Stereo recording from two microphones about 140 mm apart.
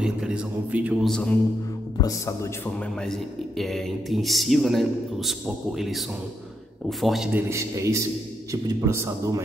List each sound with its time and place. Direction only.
0.0 s a man's voice: 5° right (ahead or behind)
1.0 s a man's voice: 5° left (ahead or behind)
2.0 s speech: 20° left (ahead or behind)
3.0 s a man's voice: centre (ahead or behind)
7.3 s a man's voice: 20° right (ahead or behind)